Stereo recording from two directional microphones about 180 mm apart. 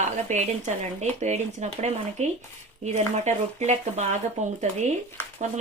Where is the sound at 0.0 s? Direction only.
40° right (ahead or behind).